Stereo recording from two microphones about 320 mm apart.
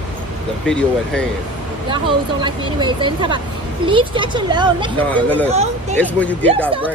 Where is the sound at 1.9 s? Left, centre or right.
Centre.